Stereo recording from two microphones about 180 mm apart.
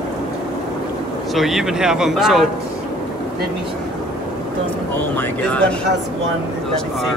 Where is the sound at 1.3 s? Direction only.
Centre (ahead or behind).